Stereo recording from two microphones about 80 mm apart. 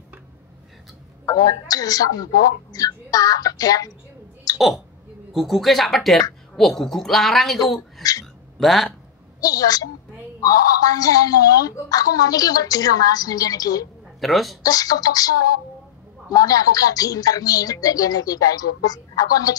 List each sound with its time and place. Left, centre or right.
1.2 s a woman's voice: left
4.6 s speech: centre
8.0 s a sound: left
8.5 s speech: centre
9.4 s speech: left
14.2 s speech: centre
14.6 s speech: left